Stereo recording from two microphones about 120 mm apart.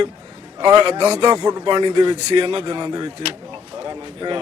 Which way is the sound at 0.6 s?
40° right (ahead or behind).